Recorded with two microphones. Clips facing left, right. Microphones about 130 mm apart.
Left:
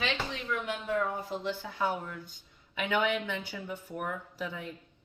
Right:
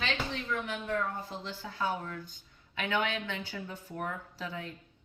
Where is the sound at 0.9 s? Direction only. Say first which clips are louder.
Left 4 dB; 15° left (ahead or behind).